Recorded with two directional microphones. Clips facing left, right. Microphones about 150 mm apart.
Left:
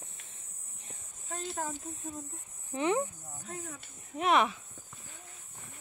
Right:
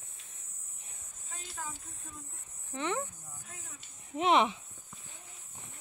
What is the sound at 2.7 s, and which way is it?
Speech, 15° left (ahead or behind).